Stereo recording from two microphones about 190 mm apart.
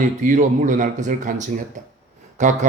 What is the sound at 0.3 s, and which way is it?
Speech, 45° right (ahead or behind).